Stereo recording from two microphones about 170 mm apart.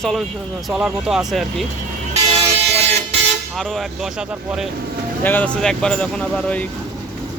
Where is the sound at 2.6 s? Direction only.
35° right (ahead or behind).